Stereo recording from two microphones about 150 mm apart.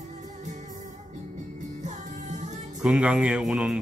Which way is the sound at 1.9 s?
55° right (ahead or behind).